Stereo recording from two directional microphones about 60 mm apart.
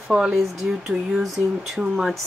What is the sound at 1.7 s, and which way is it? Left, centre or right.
Speech, centre.